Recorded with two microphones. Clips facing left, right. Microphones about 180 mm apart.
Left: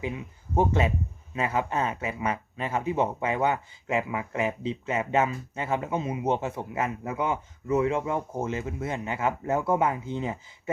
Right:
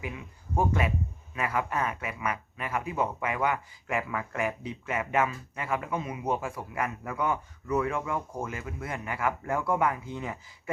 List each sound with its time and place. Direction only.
0.0 s a man's voice: 25° left (ahead or behind)